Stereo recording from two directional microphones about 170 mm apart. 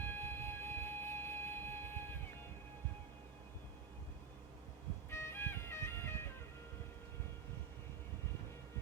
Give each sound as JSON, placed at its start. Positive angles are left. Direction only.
{"t": 0.2, "sound": "music", "side_deg": 15}
{"t": 5.1, "sound": "music", "side_deg": 15}